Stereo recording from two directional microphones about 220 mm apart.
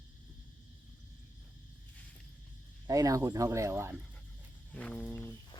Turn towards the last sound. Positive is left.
turn(degrees=10)  # may be behind; listen again after turning